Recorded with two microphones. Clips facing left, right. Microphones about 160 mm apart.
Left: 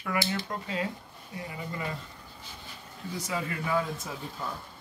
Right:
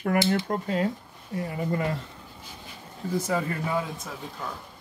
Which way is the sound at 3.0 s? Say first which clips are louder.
Right 7 dB; 50° right (ahead or behind).